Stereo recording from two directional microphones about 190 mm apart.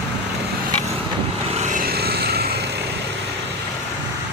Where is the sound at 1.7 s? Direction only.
55° right (ahead or behind).